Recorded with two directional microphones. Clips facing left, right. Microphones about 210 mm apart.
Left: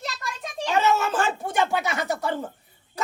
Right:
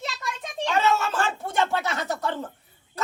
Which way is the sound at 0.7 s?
20° left (ahead or behind).